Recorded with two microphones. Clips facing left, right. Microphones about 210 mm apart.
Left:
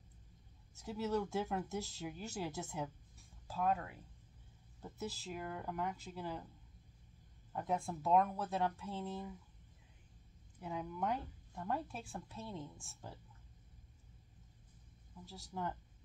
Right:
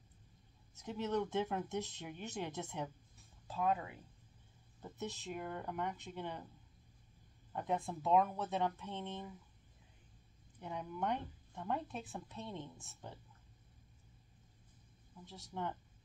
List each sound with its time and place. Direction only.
0.7 s speech: centre (ahead or behind)
7.5 s speech: centre (ahead or behind)
10.6 s speech: centre (ahead or behind)
15.2 s speech: 5° left (ahead or behind)